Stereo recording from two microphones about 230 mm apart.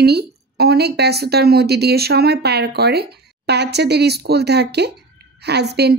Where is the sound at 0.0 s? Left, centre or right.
Right.